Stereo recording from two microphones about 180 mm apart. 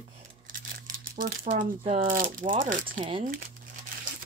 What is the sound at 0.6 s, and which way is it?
Crumpling, 50° right (ahead or behind).